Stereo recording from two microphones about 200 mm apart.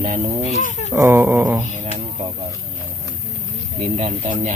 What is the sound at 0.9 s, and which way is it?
Speech, 10° right (ahead or behind).